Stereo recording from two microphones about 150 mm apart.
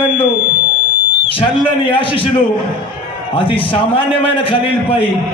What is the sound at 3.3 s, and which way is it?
A man's voice, 35° left (ahead or behind).